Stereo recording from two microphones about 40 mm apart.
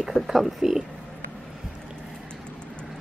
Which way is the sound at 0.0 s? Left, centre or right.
Centre.